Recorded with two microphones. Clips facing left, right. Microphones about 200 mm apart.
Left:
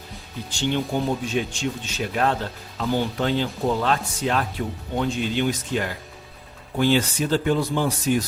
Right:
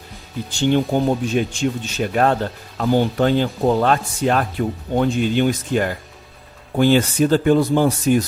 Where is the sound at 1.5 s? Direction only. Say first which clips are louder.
Right 6 dB; 50° right (ahead or behind).